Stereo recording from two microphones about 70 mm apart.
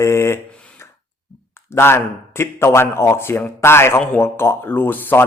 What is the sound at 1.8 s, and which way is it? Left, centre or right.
Speech, left.